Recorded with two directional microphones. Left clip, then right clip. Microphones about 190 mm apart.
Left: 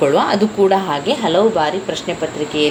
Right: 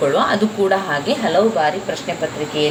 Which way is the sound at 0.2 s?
30° left (ahead or behind).